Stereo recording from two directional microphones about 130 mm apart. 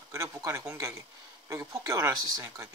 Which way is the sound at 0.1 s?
20° right (ahead or behind).